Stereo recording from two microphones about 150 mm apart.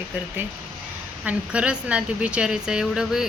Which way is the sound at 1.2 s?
10° right (ahead or behind).